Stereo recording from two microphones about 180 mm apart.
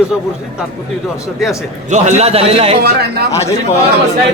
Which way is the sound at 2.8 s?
65° right (ahead or behind).